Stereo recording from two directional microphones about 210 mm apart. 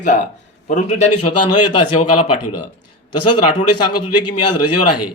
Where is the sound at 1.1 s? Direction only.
90° left.